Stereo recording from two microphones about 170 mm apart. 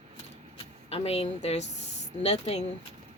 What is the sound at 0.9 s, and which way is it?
Speech, 35° left (ahead or behind).